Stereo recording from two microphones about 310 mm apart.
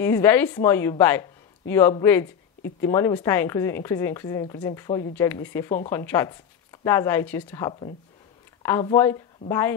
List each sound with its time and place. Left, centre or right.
0.0 s speech: centre